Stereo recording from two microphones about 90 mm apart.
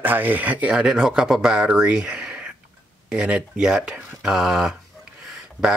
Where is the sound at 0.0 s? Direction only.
20° right (ahead or behind).